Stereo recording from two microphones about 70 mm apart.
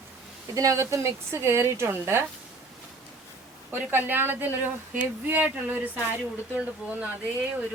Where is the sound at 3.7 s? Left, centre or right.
Right.